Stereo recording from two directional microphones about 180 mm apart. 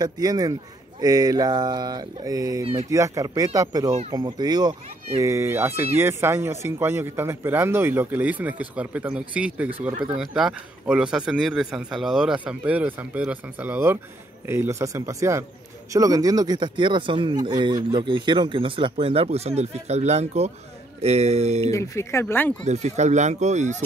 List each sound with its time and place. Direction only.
0.0 s speech: 20° right (ahead or behind)
2.6 s speech: 30° right (ahead or behind)
2.9 s speech: 20° right (ahead or behind); by 21.6 s 35° right (ahead or behind)
21.6 s speech: 15° left (ahead or behind)
22.7 s speech: 40° right (ahead or behind)